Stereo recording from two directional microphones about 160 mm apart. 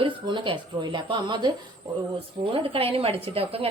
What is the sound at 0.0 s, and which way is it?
A woman's voice, 30° right (ahead or behind).